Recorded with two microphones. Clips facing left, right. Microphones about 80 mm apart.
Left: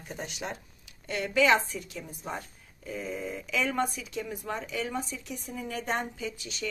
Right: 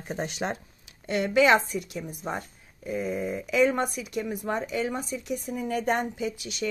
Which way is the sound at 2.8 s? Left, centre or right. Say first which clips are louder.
Right 6 dB; centre.